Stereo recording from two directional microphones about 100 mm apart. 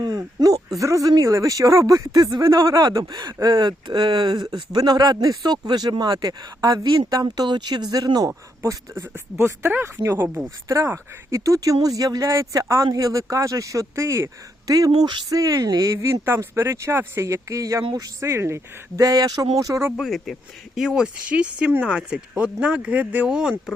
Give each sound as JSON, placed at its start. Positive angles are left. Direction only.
{"t": 0.0, "sound": "a sound", "side_deg": -40}
{"t": 0.8, "sound": "speech", "side_deg": -35}
{"t": 4.8, "sound": "speech", "side_deg": -40}
{"t": 6.8, "sound": "speech", "side_deg": -55}
{"t": 7.1, "sound": "speech", "side_deg": -40}
{"t": 14.7, "sound": "speech", "side_deg": -40}
{"t": 20.0, "sound": "speech", "side_deg": 0}